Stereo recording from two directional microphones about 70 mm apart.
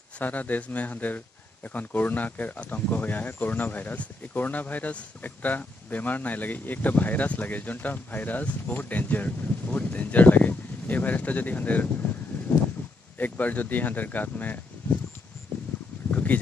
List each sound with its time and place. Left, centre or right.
0.2 s speech: left
13.2 s speech: left
16.1 s a sound: left